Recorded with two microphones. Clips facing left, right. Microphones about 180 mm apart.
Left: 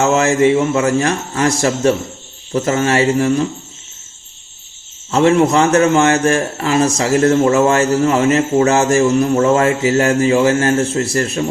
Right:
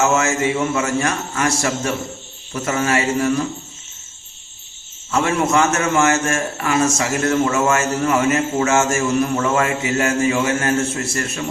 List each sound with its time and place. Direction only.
0.0 s speech: 30° left (ahead or behind)
5.1 s speech: 25° left (ahead or behind)